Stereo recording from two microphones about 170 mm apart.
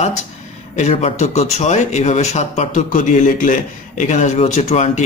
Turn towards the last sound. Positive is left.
turn(degrees=40)  # may be behind; listen again after turning